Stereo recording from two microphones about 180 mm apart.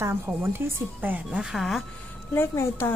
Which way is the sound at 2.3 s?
15° left (ahead or behind).